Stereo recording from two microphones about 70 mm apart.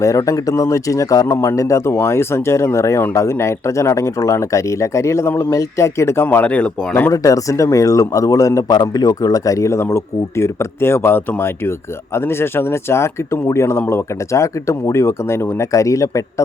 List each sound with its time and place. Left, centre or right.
0.0 s a man's voice: left
6.2 s speech: left
7.1 s a man's voice: left
8.7 s speech: left